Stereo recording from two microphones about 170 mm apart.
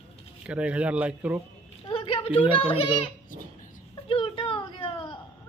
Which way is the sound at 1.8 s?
30° left (ahead or behind).